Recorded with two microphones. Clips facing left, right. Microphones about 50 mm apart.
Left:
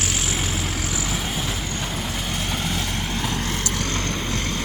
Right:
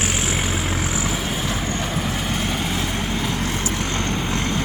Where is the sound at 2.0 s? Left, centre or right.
Centre.